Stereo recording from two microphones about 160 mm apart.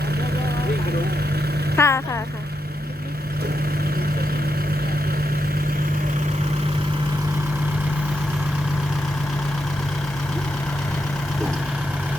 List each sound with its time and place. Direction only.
1.7 s vehicle: 15° left (ahead or behind)